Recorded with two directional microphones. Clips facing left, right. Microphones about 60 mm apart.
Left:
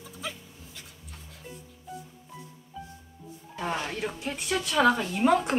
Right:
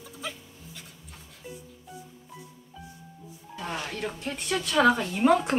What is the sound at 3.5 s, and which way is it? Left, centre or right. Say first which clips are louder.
Speech: left 3 dB; centre.